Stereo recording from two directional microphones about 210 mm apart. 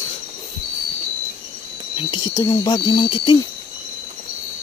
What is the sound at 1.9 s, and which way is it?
Speech, 20° left (ahead or behind).